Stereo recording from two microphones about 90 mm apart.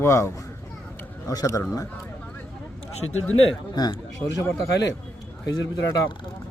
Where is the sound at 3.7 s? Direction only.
50° left (ahead or behind).